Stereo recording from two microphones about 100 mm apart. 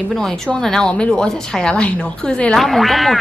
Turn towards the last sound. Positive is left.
turn(degrees=0)  # may be behind; listen again after turning